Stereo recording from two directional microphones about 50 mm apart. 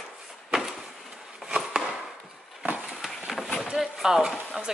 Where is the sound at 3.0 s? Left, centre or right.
Centre.